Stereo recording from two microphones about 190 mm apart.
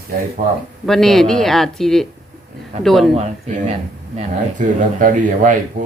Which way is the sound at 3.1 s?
35° right (ahead or behind).